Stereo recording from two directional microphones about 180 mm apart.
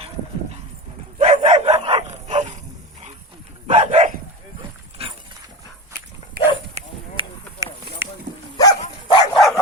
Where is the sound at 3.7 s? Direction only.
40° right (ahead or behind).